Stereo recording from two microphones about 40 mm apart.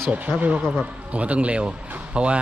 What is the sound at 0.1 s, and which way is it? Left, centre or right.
Speech, right.